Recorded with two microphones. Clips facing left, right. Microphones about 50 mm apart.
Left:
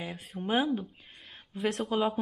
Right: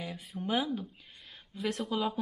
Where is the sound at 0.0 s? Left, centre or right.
Left.